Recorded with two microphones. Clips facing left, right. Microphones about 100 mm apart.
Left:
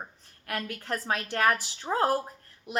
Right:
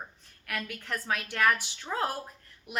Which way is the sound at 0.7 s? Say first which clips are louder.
Left 2 dB; 35° left (ahead or behind).